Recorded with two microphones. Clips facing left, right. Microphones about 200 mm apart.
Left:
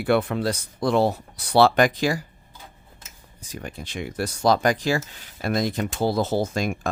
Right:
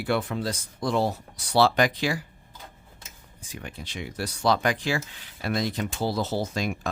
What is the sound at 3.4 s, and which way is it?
Speech, 40° left (ahead or behind).